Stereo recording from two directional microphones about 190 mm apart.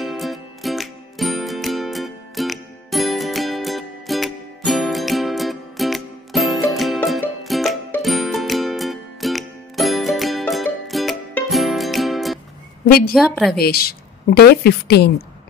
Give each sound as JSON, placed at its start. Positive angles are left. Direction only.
{"t": 0.0, "sound": "music", "side_deg": 0}
{"t": 12.8, "sound": "a woman's voice", "side_deg": 50}